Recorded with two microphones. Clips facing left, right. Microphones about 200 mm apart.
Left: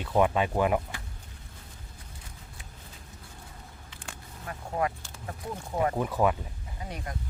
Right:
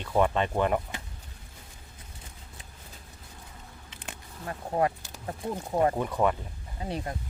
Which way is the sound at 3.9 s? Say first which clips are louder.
Right 2 dB; 20° right (ahead or behind).